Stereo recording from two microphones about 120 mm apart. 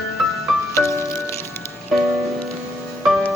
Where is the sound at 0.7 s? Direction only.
25° left (ahead or behind).